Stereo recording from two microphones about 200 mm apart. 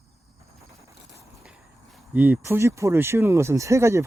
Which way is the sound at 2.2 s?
10° right (ahead or behind).